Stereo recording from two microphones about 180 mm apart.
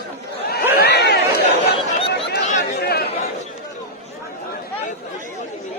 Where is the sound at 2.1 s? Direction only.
65° left (ahead or behind).